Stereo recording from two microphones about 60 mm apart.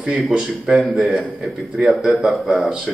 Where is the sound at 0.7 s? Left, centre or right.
Centre.